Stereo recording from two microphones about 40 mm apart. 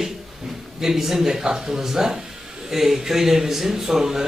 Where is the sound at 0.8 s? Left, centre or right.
Centre.